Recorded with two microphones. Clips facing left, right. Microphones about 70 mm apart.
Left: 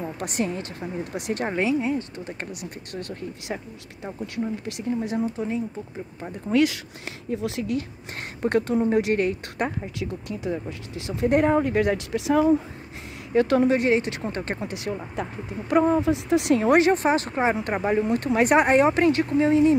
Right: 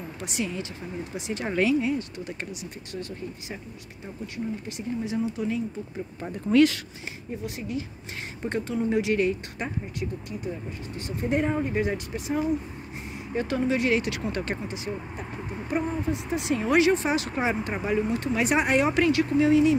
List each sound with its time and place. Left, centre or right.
0.0 s speech: left
1.5 s speech: left
2.6 s speech: left
4.6 s speech: left
6.5 s speech: centre
7.2 s speech: left
8.4 s speech: left
8.9 s speech: left
13.7 s speech: left
14.6 s speech: left
15.9 s speech: left
16.7 s speech: left